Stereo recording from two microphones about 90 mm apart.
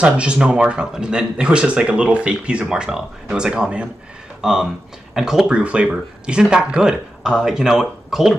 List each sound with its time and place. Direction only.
0.0 s speech: 10° right (ahead or behind)